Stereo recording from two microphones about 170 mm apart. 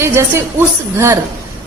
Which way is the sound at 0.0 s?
15° right (ahead or behind).